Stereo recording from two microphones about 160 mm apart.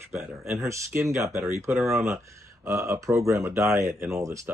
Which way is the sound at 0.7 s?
20° right (ahead or behind).